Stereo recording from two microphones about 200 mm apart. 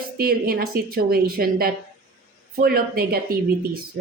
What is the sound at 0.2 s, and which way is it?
A woman's voice, 50° right (ahead or behind).